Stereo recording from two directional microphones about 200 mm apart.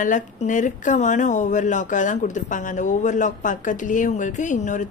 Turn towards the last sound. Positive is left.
turn(degrees=40)  # may be behind; listen again after turning